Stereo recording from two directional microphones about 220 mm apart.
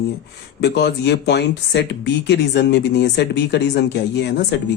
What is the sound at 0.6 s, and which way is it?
Speech, 50° left (ahead or behind).